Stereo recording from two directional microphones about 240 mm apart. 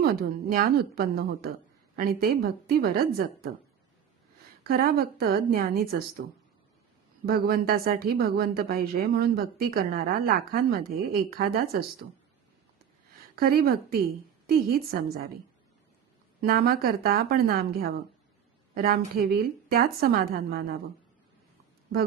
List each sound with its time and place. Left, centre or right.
0.0 s a woman's voice: right
4.6 s a woman's voice: right
7.3 s a woman's voice: right
13.3 s a woman's voice: right
16.4 s a woman's voice: right